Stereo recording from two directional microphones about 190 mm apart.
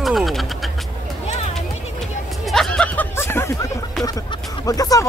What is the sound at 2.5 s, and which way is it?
Snicker, 5° left (ahead or behind).